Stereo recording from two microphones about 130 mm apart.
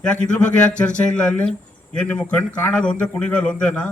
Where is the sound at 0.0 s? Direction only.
10° left (ahead or behind).